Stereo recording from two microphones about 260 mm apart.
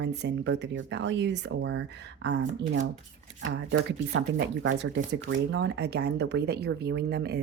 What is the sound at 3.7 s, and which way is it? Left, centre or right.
Speech, right.